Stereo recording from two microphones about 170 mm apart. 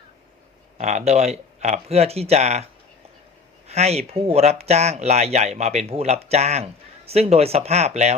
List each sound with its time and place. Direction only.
0.8 s speech: 40° right (ahead or behind)
3.7 s speech: 40° right (ahead or behind)